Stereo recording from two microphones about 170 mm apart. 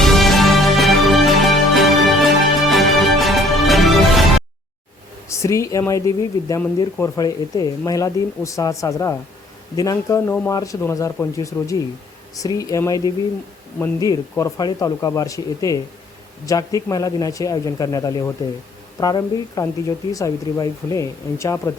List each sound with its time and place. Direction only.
0.0 s music: centre (ahead or behind)
5.3 s speech: 15° left (ahead or behind)